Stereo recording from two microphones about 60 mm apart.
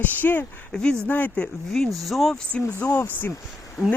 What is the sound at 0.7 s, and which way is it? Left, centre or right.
Speech, centre.